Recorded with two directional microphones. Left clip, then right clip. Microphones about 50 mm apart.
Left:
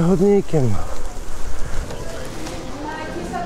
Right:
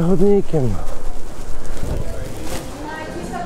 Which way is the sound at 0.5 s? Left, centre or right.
Centre.